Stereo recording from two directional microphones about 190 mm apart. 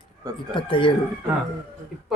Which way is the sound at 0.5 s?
25° left (ahead or behind).